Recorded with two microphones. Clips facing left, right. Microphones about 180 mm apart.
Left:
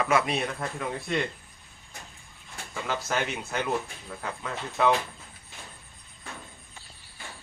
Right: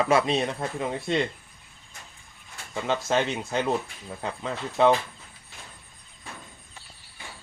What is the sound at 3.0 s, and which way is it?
Speech, 25° right (ahead or behind).